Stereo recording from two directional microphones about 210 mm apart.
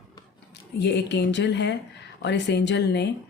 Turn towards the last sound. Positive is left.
turn(degrees=55)  # may be behind; listen again after turning